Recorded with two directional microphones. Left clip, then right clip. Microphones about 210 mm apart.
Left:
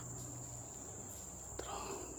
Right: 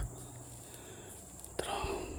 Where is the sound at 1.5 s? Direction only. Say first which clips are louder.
Right 8 dB; 35° right (ahead or behind).